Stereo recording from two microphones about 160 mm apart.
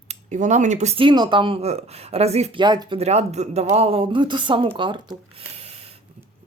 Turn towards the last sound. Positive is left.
turn(degrees=-40)  # may be behind; listen again after turning